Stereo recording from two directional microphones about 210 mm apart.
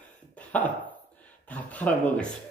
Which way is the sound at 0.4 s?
5° left (ahead or behind).